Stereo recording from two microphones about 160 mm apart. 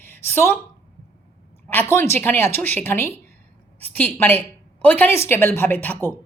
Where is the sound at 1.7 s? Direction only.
15° left (ahead or behind).